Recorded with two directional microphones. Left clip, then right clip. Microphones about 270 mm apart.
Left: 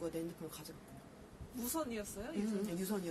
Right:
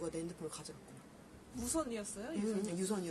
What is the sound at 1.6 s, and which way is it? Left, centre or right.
Speech, centre.